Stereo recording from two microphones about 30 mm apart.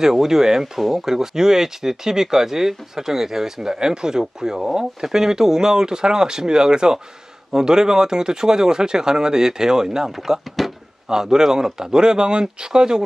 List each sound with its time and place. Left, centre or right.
0.0 s speech: centre
3.7 s speech: right